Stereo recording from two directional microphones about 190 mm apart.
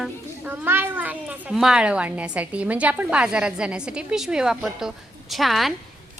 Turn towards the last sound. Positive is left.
turn(degrees=0)  # may be behind; listen again after turning